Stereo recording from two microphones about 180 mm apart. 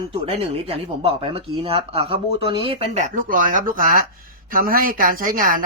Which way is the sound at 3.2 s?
50° right (ahead or behind).